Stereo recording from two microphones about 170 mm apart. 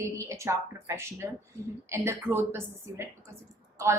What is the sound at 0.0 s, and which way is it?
Speech, 15° right (ahead or behind).